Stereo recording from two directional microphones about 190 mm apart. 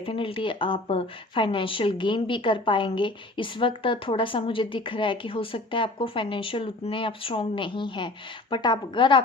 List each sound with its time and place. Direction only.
0.0 s speech: 30° left (ahead or behind)